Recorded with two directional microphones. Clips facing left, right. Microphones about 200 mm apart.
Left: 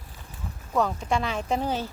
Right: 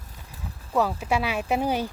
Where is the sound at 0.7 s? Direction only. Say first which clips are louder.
Right 1 dB; 5° right (ahead or behind).